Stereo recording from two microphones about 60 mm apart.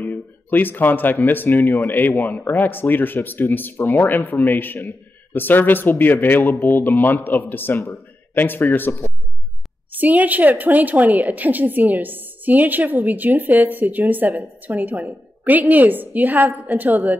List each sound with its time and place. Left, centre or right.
0.0 s speech: left
9.9 s a woman's voice: right